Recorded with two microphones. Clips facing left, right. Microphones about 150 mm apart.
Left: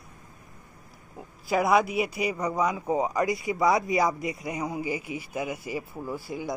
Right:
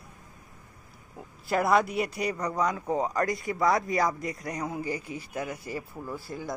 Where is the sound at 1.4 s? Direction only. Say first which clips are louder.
Left 1 dB; centre (ahead or behind).